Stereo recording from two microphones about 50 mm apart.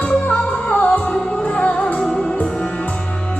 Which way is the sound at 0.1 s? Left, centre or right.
Left.